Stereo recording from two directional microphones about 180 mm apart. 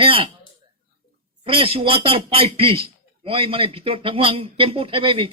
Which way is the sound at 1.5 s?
30° right (ahead or behind).